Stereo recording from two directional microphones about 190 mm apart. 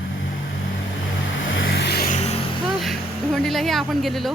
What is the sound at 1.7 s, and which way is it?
Music, 55° left (ahead or behind).